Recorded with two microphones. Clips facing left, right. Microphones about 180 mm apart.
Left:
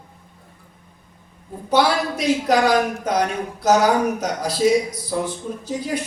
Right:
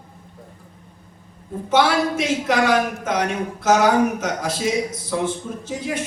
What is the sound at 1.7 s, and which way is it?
Speech, 35° left (ahead or behind).